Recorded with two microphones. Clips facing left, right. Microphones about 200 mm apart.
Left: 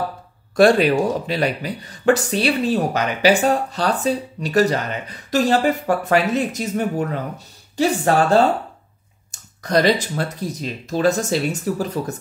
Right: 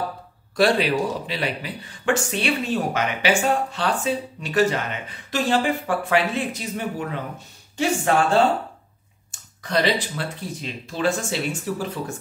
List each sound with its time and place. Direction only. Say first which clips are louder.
0.6 s speech: left 6 dB; 50° left (ahead or behind)